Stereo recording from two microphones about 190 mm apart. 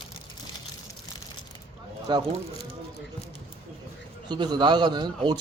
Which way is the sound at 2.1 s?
20° right (ahead or behind).